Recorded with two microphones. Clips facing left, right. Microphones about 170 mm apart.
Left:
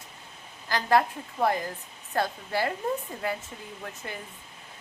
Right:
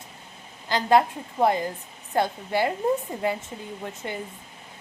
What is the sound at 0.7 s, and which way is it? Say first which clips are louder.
A woman's voice: right 4 dB; 20° right (ahead or behind).